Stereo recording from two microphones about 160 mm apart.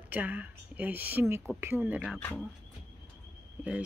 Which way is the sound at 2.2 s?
10° left (ahead or behind).